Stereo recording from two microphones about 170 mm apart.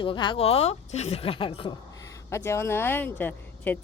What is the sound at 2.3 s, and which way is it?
Speech, 15° left (ahead or behind).